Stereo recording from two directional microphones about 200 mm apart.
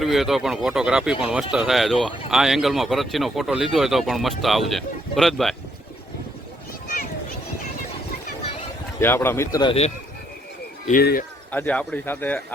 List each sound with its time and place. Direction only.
0.0 s speech: centre (ahead or behind)
9.0 s speech: 10° left (ahead or behind); by 9.9 s 30° left (ahead or behind)
10.8 s speech: 45° left (ahead or behind)
11.5 s speech: 5° left (ahead or behind)